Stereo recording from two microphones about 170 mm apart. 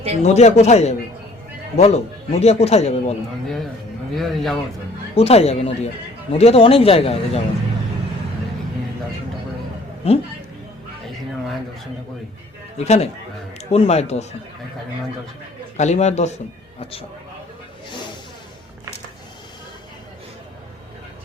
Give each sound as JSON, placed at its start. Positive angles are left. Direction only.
{"t": 0.2, "sound": "speech", "side_deg": 40}
{"t": 3.4, "sound": "speech", "side_deg": 0}
{"t": 5.1, "sound": "speech", "side_deg": 35}
{"t": 10.0, "sound": "speech", "side_deg": 35}
{"t": 12.7, "sound": "speech", "side_deg": 40}
{"t": 15.8, "sound": "speech", "side_deg": 40}